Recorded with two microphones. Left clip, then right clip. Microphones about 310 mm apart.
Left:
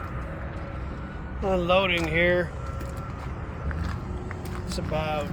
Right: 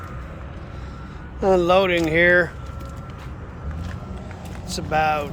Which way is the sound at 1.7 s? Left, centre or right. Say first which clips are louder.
Right 5 dB; centre.